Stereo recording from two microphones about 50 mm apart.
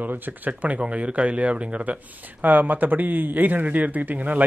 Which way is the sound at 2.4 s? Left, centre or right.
Right.